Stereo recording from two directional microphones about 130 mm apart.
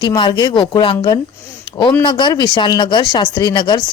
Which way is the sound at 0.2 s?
35° left (ahead or behind).